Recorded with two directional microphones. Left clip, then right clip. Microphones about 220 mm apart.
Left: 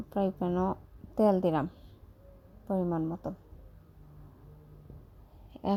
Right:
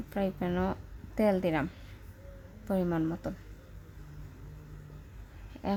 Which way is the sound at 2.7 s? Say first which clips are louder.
Right 1 dB; 5° left (ahead or behind).